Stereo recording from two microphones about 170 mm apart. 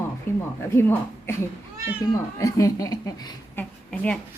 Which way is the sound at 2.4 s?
20° left (ahead or behind).